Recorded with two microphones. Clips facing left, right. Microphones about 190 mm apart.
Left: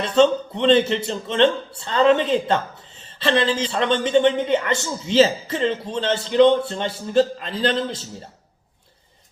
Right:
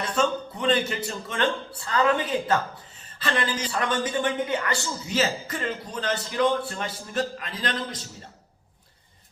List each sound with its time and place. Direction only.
0.2 s speech: 25° left (ahead or behind)